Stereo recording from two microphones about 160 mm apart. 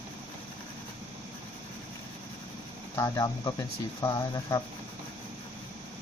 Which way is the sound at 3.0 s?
20° left (ahead or behind).